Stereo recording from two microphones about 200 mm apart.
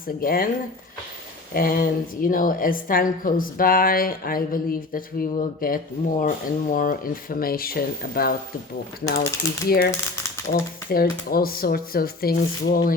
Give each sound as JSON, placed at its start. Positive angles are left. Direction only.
{"t": 0.2, "sound": "a woman's voice", "side_deg": 45}
{"t": 1.5, "sound": "a woman's voice", "side_deg": 45}